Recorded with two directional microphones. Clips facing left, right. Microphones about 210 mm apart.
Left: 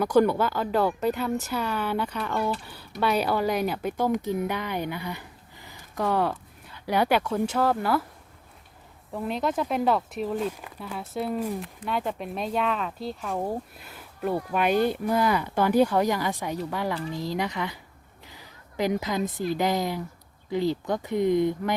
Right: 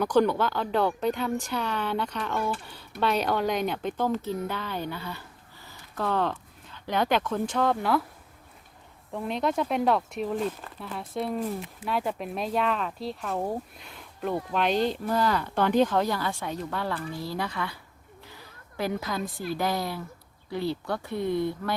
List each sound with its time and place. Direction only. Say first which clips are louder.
0.0 s speech: left 2 dB; 10° left (ahead or behind)
9.1 s speech: even; centre (ahead or behind); by 17.7 s 15° left (ahead or behind)
18.3 s a sound: left 2 dB; 15° left (ahead or behind)
19.5 s speech: left 2 dB; 15° left (ahead or behind)